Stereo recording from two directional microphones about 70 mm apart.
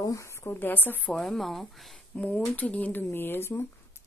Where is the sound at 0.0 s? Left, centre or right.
Left.